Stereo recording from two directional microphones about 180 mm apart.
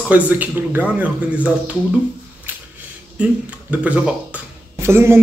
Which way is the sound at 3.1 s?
5° right (ahead or behind).